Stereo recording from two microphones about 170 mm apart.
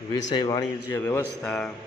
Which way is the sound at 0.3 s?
20° left (ahead or behind).